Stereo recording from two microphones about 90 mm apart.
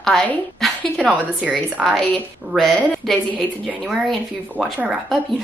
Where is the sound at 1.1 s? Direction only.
15° right (ahead or behind).